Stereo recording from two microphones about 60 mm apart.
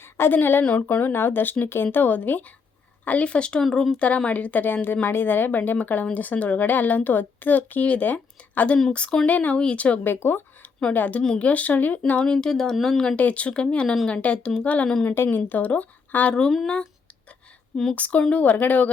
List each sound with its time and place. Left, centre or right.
0.0 s a woman's voice: left; by 3.6 s centre
3.6 s a woman's voice: centre
3.9 s a woman's voice: left
10.0 s speech: left
11.2 s speech: centre
12.2 s a woman's voice: centre
13.1 s speech: left
15.1 s a woman's voice: left
15.4 s speech: left
17.9 s speech: left